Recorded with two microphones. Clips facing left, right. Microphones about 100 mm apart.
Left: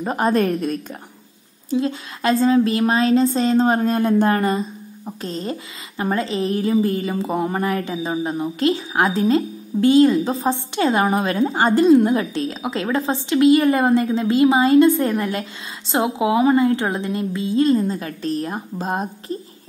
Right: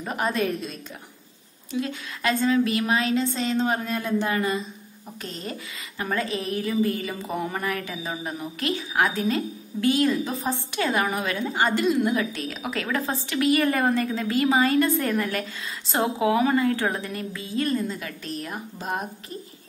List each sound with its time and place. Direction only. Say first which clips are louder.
0.0 s a woman's voice: left 7 dB; 35° left (ahead or behind)
1.7 s a woman's voice: left 7 dB; 30° left (ahead or behind)
5.0 s a woman's voice: left 8 dB; 30° left (ahead or behind)